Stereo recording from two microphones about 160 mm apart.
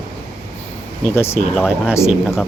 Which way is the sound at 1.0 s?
15° left (ahead or behind).